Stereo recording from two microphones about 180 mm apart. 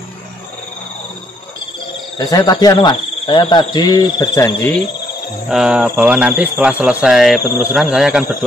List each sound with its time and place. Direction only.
2.1 s speech: 20° left (ahead or behind)
5.5 s speech: 5° right (ahead or behind)